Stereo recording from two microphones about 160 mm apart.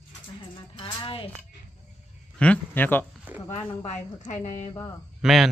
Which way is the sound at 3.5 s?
45° left (ahead or behind).